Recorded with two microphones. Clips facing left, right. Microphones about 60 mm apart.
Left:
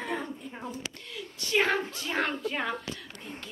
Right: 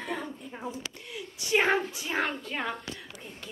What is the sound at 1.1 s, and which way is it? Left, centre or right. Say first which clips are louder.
Female singing: right 1 dB; centre.